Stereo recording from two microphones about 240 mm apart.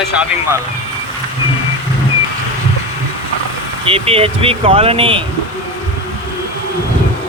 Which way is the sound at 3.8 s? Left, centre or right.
Right.